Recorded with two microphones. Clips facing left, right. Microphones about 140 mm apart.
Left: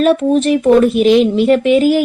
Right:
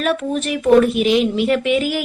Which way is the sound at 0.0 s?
30° left (ahead or behind).